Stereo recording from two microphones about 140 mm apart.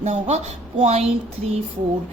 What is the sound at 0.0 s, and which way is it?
A woman's voice, 55° right (ahead or behind).